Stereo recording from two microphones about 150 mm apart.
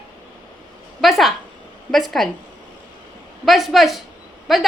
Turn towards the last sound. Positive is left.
turn(degrees=0)  # may be behind; listen again after turning